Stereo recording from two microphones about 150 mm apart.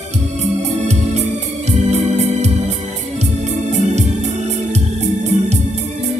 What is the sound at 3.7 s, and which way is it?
Organ, 50° right (ahead or behind).